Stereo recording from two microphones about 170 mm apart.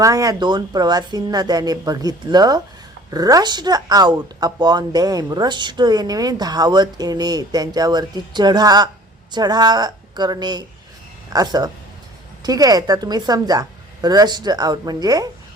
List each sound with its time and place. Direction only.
0.0 s a woman's voice: 20° right (ahead or behind)